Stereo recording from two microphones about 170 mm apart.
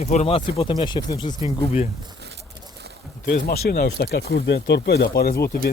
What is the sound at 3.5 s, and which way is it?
Speech, 65° left (ahead or behind).